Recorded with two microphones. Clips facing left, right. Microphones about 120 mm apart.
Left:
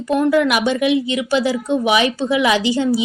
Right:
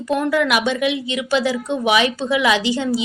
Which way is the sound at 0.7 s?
40° left (ahead or behind).